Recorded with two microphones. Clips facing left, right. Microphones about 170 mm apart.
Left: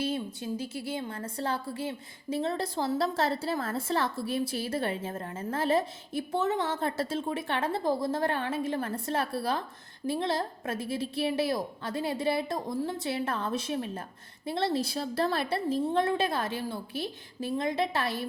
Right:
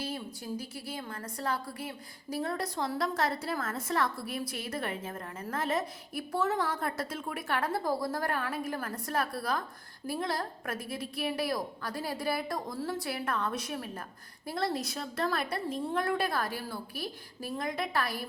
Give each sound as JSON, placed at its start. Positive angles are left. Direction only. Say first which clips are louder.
{"t": 0.0, "sound": "a woman's voice", "louder": "left 6 dB", "side_deg": 25}